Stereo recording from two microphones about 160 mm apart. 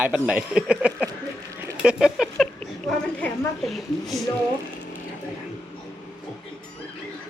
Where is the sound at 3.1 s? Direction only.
5° left (ahead or behind).